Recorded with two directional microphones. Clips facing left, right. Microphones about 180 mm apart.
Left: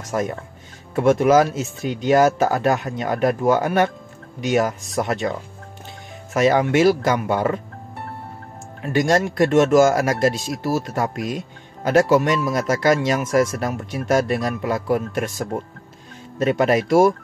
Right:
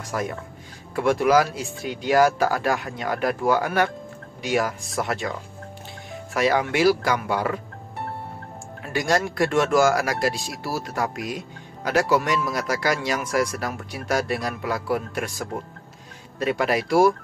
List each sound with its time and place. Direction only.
0.0 s speech: 25° left (ahead or behind)
6.3 s speech: 20° left (ahead or behind)
8.8 s speech: 20° left (ahead or behind)